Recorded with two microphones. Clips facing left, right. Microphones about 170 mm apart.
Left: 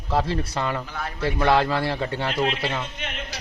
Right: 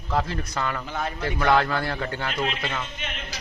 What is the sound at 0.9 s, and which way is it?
Speech, 20° right (ahead or behind).